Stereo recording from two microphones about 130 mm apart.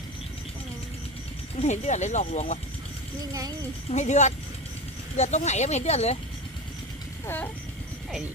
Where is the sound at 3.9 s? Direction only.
60° left (ahead or behind).